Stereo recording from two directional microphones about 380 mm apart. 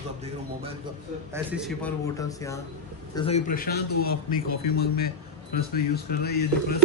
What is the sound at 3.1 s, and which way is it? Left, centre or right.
A man's voice, centre.